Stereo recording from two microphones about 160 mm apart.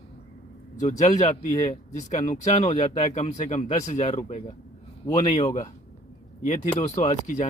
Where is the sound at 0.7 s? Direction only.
45° left (ahead or behind).